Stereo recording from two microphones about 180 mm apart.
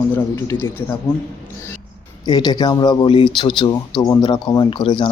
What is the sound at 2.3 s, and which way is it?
Speech, 25° left (ahead or behind).